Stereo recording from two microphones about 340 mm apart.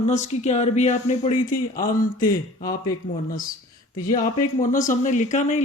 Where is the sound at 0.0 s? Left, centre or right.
Centre.